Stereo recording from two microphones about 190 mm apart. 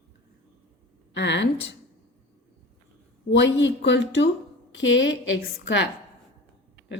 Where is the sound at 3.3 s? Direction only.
70° left (ahead or behind).